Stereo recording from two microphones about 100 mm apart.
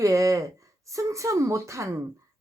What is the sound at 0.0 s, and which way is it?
Speech, 35° right (ahead or behind).